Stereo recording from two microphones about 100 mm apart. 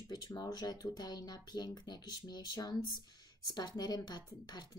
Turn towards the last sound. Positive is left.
turn(degrees=40)  # may be behind; listen again after turning